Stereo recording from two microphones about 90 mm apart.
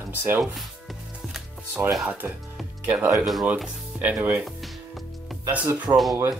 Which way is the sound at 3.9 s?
10° right (ahead or behind).